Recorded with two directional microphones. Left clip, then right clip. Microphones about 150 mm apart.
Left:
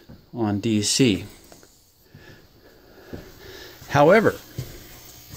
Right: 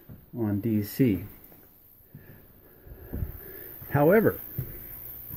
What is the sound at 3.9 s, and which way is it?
Speech, 10° left (ahead or behind).